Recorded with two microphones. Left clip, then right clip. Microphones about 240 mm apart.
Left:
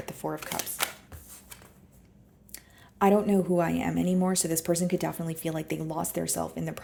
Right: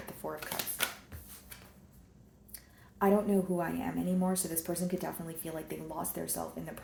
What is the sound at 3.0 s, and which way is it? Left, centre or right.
A woman's voice, left.